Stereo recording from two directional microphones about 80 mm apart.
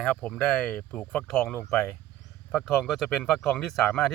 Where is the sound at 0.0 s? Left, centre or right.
Centre.